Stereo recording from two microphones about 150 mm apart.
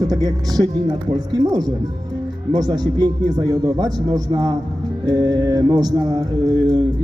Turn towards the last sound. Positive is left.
turn(degrees=-25)  # may be behind; listen again after turning